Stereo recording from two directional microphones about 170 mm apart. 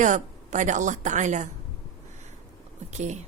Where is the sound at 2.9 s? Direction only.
45° right (ahead or behind).